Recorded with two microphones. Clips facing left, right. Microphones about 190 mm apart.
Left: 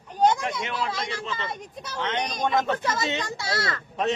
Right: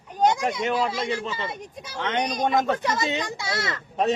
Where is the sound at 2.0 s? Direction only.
50° right (ahead or behind).